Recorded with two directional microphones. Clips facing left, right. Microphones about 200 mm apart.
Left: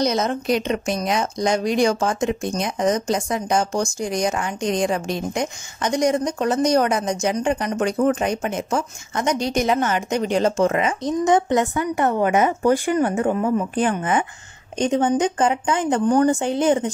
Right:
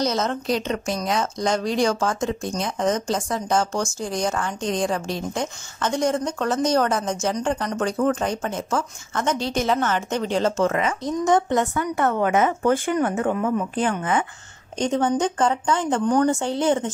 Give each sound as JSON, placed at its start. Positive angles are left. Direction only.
{"t": 0.0, "sound": "a woman's voice", "side_deg": 15}